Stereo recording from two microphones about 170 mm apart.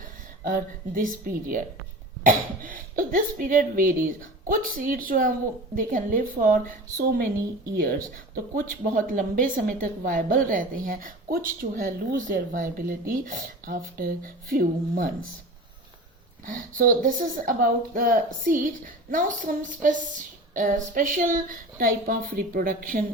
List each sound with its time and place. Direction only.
0.4 s a woman's voice: 50° right (ahead or behind)
8.5 s a woman's voice: 50° right (ahead or behind)
16.5 s a woman's voice: 55° right (ahead or behind)